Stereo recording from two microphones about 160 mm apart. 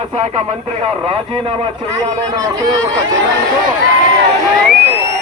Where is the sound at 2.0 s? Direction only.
20° right (ahead or behind).